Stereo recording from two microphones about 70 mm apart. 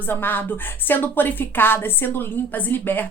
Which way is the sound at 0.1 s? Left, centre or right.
Left.